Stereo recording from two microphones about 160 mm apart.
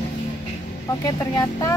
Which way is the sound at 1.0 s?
25° left (ahead or behind).